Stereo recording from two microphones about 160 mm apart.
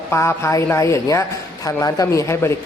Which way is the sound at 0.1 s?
15° left (ahead or behind).